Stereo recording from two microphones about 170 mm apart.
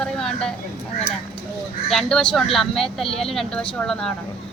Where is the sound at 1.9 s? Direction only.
5° left (ahead or behind).